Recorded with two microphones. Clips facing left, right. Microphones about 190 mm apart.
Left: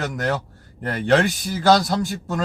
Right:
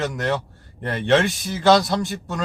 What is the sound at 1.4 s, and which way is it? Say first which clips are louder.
Speech: right 1 dB; 20° right (ahead or behind).